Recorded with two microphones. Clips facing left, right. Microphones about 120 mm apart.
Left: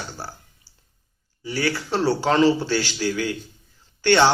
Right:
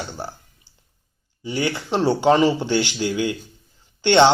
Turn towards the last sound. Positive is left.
turn(degrees=-20)  # may be behind; listen again after turning